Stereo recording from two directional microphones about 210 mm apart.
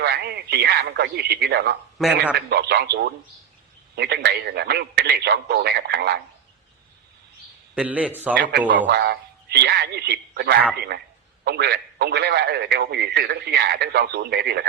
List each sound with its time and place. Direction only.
0.0 s speech: 50° right (ahead or behind)
2.0 s a man's voice: centre (ahead or behind)
2.5 s a man's voice: 50° right (ahead or behind)
7.8 s a man's voice: 5° right (ahead or behind)
8.4 s speech: 45° right (ahead or behind)